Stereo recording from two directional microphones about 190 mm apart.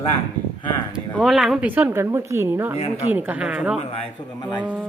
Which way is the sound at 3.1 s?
10° right (ahead or behind).